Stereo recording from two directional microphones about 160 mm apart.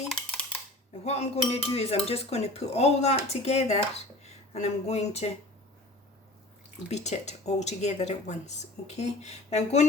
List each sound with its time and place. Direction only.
0.1 s a sound: 5° left (ahead or behind)
1.0 s speech: 45° left (ahead or behind)
6.9 s speech: 45° left (ahead or behind)